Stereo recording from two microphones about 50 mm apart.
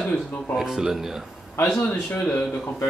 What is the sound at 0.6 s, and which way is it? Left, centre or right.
Speech, centre.